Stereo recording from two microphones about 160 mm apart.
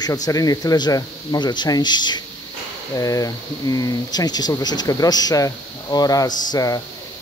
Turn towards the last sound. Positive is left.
turn(degrees=20)  # may be behind; listen again after turning